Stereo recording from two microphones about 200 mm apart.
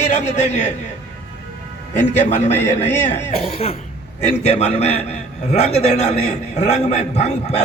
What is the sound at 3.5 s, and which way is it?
A man's voice, 30° left (ahead or behind).